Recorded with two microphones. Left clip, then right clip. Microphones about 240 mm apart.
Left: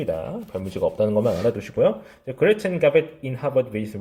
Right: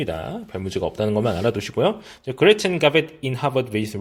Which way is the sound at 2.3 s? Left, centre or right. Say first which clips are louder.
Right 3 dB; right.